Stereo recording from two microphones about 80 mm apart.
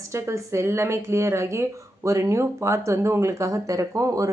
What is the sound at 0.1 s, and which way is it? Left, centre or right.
Speech, right.